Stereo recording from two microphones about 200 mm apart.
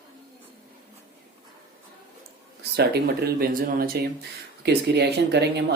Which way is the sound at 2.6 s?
50° right (ahead or behind).